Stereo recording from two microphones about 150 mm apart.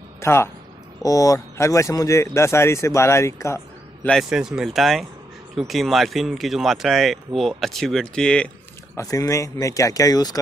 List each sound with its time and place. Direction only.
0.2 s speech: 15° left (ahead or behind)
4.1 s speech: centre (ahead or behind)
8.9 s speech: 25° left (ahead or behind)